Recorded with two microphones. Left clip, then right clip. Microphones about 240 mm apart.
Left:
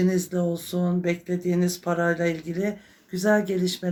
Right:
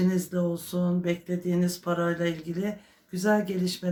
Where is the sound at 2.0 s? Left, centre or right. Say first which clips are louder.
Left 5 dB; right.